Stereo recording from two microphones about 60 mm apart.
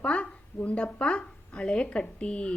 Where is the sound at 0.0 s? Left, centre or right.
Left.